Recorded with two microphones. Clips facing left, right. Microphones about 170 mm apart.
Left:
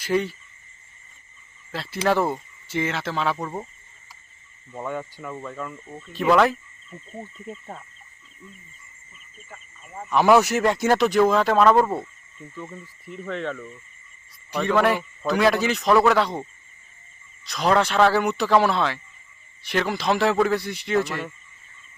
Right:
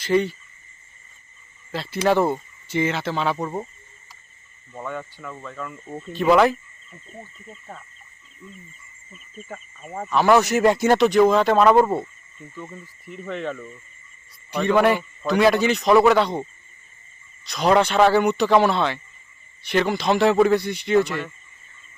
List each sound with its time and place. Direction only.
0.0 s speech: 5° left (ahead or behind)
1.7 s speech: centre (ahead or behind)
4.7 s speech: 10° left (ahead or behind)
6.1 s speech: 5° right (ahead or behind)
9.5 s speech: 50° right (ahead or behind)
10.2 s speech: 5° left (ahead or behind)
10.6 s speech: 10° right (ahead or behind)